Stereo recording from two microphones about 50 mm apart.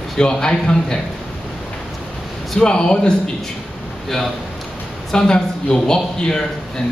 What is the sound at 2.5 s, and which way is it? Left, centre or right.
Speech, centre.